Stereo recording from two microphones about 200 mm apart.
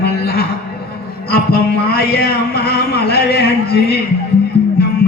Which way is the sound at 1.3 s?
50° left (ahead or behind).